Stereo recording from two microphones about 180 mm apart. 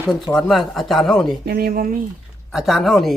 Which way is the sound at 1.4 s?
55° right (ahead or behind).